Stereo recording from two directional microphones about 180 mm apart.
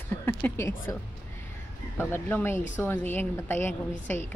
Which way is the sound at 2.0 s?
10° left (ahead or behind).